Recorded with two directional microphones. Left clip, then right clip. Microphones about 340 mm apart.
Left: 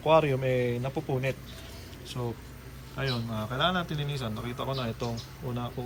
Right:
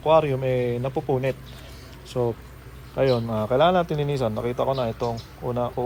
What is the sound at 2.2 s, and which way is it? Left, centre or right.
Speech, centre.